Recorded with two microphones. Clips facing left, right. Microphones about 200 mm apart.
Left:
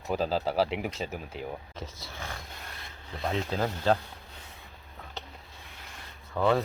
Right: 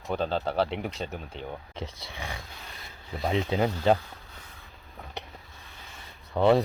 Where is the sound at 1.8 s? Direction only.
15° right (ahead or behind).